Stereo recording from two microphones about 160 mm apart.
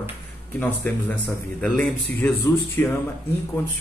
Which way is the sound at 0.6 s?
10° left (ahead or behind).